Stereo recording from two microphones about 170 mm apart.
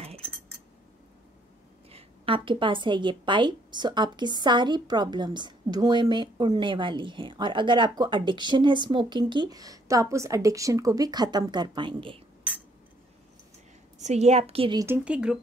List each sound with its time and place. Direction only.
1.9 s a woman's voice: 35° right (ahead or behind)
13.9 s a woman's voice: 40° right (ahead or behind)
15.0 s speech: 5° right (ahead or behind)